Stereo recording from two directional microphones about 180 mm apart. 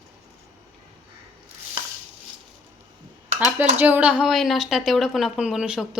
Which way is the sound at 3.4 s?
10° right (ahead or behind).